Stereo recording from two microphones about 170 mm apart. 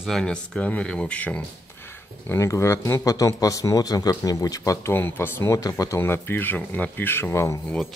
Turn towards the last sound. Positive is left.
turn(degrees=15)  # may be behind; listen again after turning